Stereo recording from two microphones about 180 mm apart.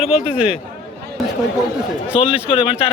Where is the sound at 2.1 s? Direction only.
30° left (ahead or behind).